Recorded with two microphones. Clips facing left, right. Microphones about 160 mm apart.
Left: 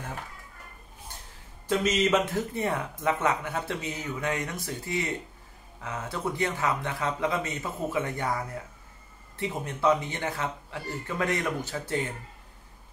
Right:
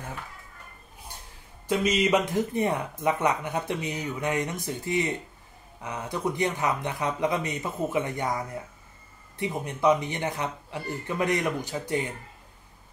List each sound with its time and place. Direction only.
1.7 s speech: 10° right (ahead or behind)